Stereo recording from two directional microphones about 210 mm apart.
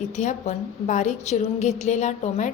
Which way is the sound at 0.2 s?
35° left (ahead or behind).